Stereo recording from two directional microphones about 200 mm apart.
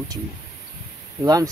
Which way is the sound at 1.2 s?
20° right (ahead or behind).